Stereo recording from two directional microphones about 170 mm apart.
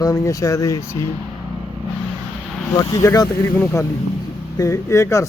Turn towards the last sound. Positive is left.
turn(degrees=15)  # may be behind; listen again after turning